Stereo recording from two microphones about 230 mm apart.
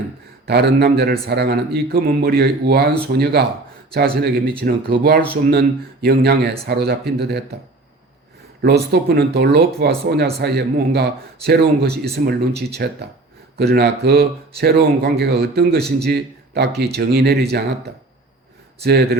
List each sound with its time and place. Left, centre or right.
0.4 s speech: right
8.6 s speech: right